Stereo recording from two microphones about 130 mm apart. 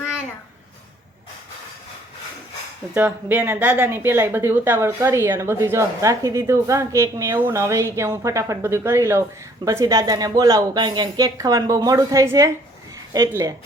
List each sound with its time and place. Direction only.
2.9 s speech: 15° right (ahead or behind)